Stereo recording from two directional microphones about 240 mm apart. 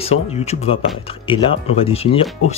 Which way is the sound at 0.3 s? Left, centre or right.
Left.